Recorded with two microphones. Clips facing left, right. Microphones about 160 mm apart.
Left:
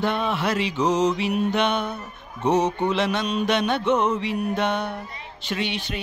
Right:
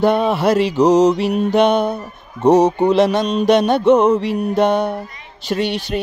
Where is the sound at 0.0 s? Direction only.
40° right (ahead or behind).